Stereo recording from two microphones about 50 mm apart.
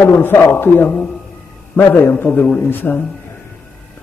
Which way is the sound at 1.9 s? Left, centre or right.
Left.